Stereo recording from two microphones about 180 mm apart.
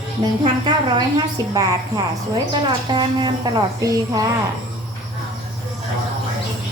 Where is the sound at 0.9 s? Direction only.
25° right (ahead or behind).